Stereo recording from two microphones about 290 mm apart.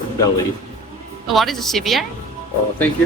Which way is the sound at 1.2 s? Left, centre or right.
Centre.